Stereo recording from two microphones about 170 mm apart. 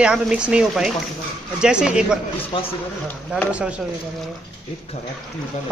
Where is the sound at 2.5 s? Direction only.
30° left (ahead or behind).